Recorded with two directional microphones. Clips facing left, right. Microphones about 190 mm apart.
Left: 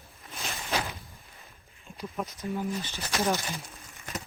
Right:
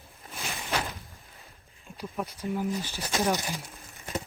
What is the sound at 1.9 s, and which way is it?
Speech, 10° right (ahead or behind).